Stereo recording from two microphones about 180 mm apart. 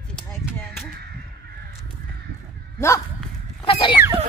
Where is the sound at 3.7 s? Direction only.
30° left (ahead or behind).